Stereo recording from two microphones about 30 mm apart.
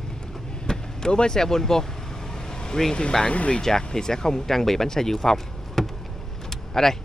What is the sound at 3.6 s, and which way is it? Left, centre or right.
Speech, centre.